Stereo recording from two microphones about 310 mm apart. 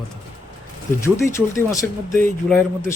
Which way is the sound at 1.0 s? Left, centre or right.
Centre.